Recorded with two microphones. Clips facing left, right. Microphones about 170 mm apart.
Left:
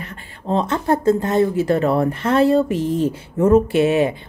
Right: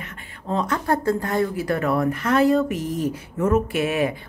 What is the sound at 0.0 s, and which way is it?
Speech, 30° left (ahead or behind).